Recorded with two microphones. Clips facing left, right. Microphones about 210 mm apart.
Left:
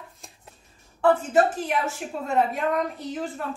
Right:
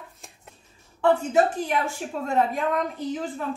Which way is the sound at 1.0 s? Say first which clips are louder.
Even; centre (ahead or behind).